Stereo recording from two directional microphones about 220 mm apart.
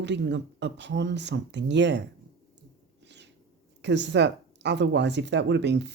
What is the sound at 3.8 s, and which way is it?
Speech, 55° right (ahead or behind).